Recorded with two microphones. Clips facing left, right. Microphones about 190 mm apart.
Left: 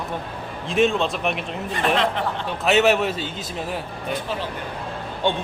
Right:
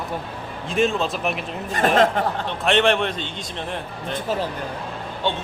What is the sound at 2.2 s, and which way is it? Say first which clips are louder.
Speech: right 3 dB; 45° right (ahead or behind).